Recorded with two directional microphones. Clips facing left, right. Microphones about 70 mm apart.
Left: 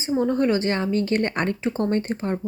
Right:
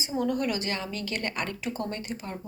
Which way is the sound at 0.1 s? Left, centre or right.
Left.